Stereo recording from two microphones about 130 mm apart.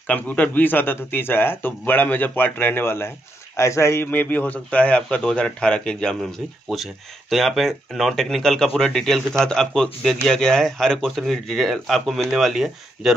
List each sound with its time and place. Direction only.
0.1 s a man's voice: 10° left (ahead or behind)